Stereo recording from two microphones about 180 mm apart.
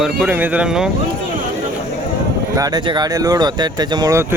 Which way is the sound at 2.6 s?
25° right (ahead or behind).